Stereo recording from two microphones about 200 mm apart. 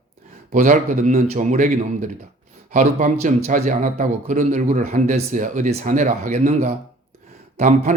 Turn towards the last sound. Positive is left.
turn(degrees=-35)  # may be behind; listen again after turning